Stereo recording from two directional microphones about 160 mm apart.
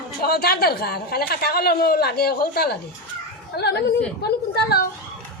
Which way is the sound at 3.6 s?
90° left.